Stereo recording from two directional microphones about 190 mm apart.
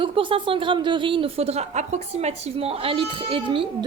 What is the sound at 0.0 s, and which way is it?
A woman's voice, 25° right (ahead or behind).